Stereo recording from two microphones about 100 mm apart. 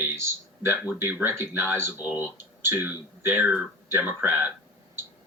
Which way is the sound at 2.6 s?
20° right (ahead or behind).